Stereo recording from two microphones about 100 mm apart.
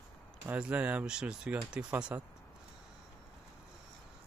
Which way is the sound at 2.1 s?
20° right (ahead or behind).